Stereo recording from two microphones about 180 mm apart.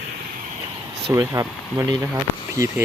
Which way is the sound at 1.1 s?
15° right (ahead or behind).